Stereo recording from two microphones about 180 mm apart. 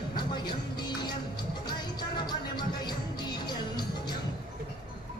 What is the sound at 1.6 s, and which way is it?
Music, 25° left (ahead or behind).